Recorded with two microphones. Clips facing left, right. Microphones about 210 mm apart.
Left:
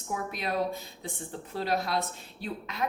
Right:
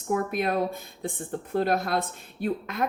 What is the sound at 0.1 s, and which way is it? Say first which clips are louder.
Speech: right 7 dB; 55° right (ahead or behind).